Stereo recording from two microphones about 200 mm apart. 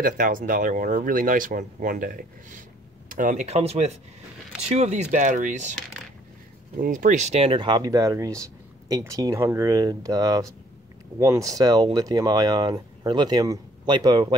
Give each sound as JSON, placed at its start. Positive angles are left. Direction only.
{"t": 0.0, "sound": "speech", "side_deg": -45}
{"t": 6.8, "sound": "speech", "side_deg": -40}